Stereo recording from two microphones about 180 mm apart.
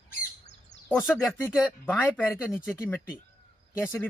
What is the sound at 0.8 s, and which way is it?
Speech, 10° left (ahead or behind).